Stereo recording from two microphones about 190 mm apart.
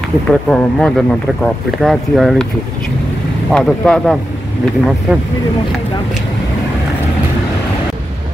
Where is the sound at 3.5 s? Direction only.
5° left (ahead or behind).